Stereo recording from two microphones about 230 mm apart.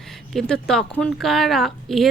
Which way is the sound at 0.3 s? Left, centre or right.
Centre.